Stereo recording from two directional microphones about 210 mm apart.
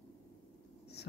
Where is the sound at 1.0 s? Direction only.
50° left (ahead or behind).